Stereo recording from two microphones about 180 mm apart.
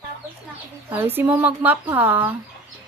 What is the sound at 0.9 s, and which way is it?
Speech, 10° right (ahead or behind).